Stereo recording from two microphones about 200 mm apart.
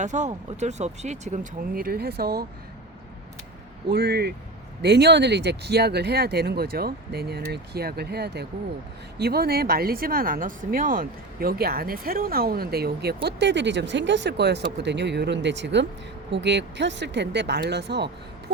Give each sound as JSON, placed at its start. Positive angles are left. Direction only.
{"t": 0.0, "sound": "speech", "side_deg": -35}
{"t": 3.8, "sound": "speech", "side_deg": -50}